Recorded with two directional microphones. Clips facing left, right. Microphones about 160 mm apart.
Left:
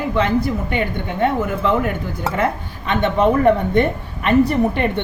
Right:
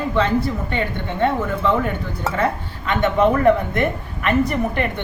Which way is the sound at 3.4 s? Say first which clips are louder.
Left 2 dB; 30° left (ahead or behind).